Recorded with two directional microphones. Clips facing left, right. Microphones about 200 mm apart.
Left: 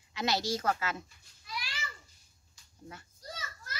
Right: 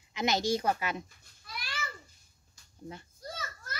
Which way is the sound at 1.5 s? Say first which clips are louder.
Left 2 dB; 55° right (ahead or behind).